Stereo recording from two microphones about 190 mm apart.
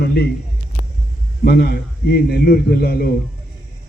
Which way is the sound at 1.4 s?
50° left (ahead or behind).